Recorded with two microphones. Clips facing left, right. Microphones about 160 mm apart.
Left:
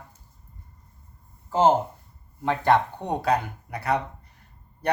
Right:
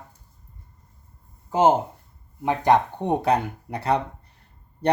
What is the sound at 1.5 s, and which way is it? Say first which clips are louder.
Speech: right 1 dB; 15° right (ahead or behind).